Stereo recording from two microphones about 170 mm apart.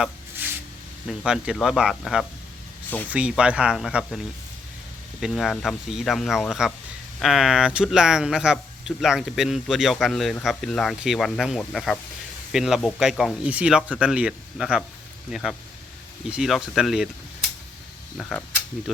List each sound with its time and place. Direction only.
0.4 s spray: 10° right (ahead or behind)
1.0 s speech: 5° right (ahead or behind)
5.2 s speech: centre (ahead or behind)
18.2 s speech: 5° left (ahead or behind)